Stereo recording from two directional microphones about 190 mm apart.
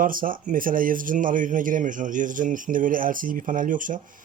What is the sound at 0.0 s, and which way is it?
A man's voice, 45° right (ahead or behind).